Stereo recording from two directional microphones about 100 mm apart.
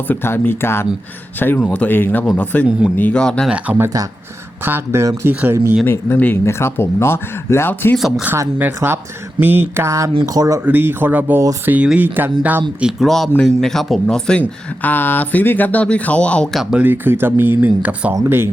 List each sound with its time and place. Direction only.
0.1 s speech: 20° left (ahead or behind)
3.5 s speech: 15° right (ahead or behind)
5.3 s speech: 15° right (ahead or behind)
6.1 s speech: 20° left (ahead or behind)
7.9 s speech: centre (ahead or behind)
8.5 s speech: 20° right (ahead or behind); by 10.6 s 35° right (ahead or behind)
10.7 s speech: 20° right (ahead or behind)
12.8 s speech: centre (ahead or behind)
16.8 s speech: 20° right (ahead or behind)
18.1 s speech: 25° right (ahead or behind)